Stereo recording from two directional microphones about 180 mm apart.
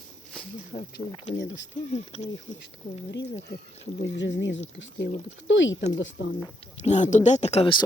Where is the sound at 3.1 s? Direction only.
75° left (ahead or behind); by 6.4 s 90° left.